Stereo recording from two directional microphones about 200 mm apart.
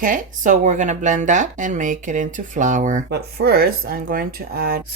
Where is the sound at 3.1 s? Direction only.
50° right (ahead or behind).